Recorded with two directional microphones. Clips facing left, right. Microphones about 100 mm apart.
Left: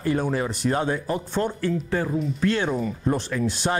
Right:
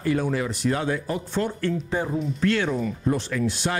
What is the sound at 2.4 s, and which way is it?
Speech, 25° left (ahead or behind).